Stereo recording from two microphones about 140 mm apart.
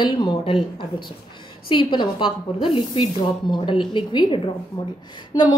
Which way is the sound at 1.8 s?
35° left (ahead or behind).